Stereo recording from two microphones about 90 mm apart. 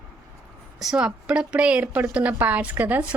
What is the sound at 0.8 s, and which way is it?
A woman's voice, 10° right (ahead or behind).